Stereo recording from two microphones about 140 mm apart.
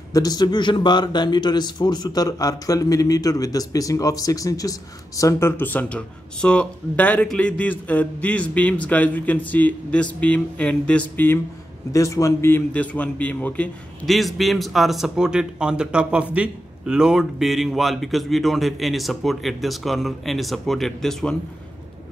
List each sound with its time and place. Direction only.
0.1 s a man's voice: 30° left (ahead or behind); by 11.3 s 10° left (ahead or behind)
11.9 s a man's voice: 20° left (ahead or behind); by 21.4 s 5° left (ahead or behind)